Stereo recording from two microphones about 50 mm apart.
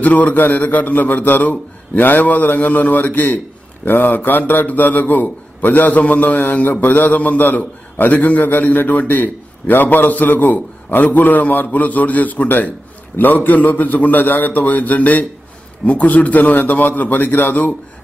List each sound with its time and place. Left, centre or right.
0.0 s a man's voice: left